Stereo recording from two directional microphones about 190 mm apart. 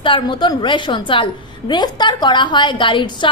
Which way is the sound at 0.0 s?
25° left (ahead or behind).